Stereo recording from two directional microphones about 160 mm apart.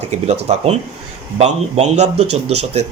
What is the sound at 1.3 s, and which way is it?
Speech, 45° right (ahead or behind).